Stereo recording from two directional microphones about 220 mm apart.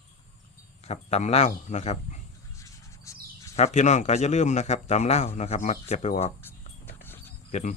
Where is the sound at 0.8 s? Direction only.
30° left (ahead or behind).